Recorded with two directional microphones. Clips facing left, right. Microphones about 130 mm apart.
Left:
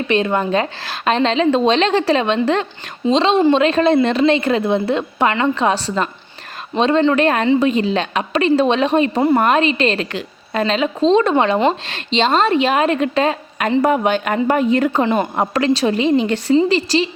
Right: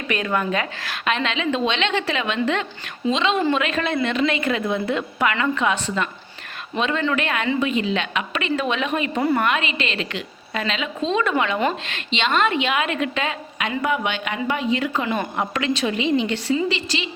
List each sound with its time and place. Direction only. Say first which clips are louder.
0.1 s a woman's voice: left 5 dB; 25° left (ahead or behind)